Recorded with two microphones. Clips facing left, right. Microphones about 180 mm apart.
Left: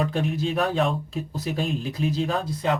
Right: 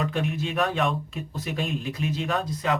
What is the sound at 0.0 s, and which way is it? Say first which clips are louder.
Speech: left 3 dB; 35° left (ahead or behind).